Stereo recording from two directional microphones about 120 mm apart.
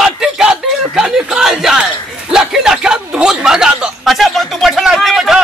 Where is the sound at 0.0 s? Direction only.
5° right (ahead or behind).